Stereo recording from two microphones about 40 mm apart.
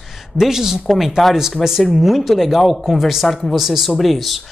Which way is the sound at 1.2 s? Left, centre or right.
Centre.